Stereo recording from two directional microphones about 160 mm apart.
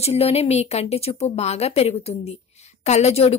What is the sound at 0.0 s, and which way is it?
A woman's voice, 40° left (ahead or behind).